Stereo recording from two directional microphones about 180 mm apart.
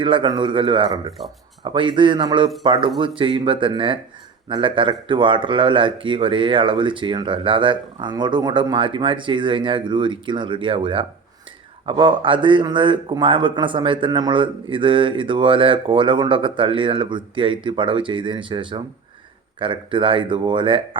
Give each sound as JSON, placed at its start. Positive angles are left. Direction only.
{"t": 0.0, "sound": "a man's voice", "side_deg": -25}